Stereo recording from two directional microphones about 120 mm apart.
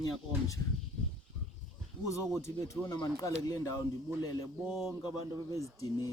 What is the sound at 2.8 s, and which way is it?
Speech, 30° left (ahead or behind).